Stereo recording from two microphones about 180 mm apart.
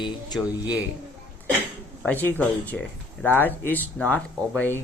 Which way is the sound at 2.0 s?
10° left (ahead or behind).